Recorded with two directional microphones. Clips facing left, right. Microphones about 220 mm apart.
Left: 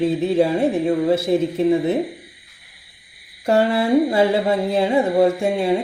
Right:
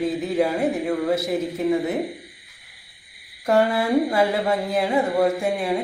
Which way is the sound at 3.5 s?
30° left (ahead or behind).